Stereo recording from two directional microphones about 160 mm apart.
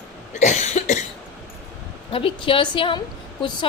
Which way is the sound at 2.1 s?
35° left (ahead or behind).